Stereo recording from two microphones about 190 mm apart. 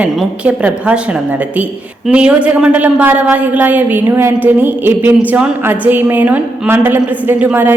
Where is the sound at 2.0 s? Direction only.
5° right (ahead or behind).